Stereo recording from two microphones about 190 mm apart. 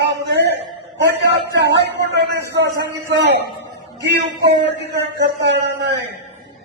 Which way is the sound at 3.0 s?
65° right (ahead or behind).